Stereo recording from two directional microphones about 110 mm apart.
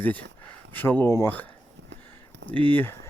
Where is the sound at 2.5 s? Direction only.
15° left (ahead or behind).